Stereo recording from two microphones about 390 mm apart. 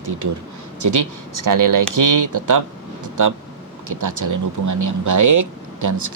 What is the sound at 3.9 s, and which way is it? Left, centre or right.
Speech, right.